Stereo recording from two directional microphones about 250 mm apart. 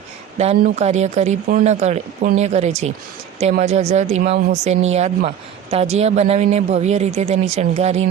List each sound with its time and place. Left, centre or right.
0.3 s speech: right